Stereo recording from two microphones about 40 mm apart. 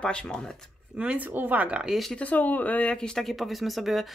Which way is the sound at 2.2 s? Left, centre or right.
Left.